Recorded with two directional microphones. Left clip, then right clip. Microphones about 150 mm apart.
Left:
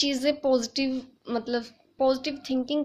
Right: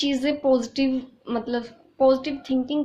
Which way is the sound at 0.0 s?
45° left (ahead or behind).